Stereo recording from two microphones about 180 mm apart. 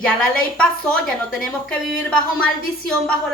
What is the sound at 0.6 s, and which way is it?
Speech, 5° left (ahead or behind).